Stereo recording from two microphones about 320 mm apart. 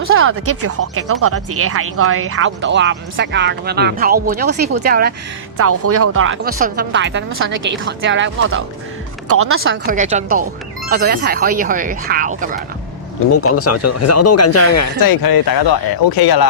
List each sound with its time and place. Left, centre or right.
0.0 s speech: right
5.5 s speech: right
9.8 s speech: right
13.3 s speech: left
15.0 s speech: left